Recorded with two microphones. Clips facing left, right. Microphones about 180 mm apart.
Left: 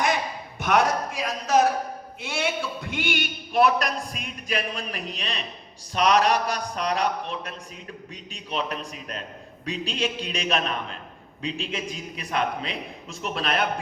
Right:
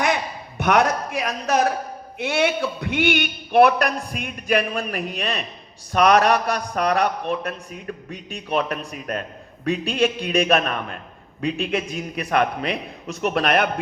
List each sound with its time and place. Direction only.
0.6 s a man's voice: 65° right (ahead or behind)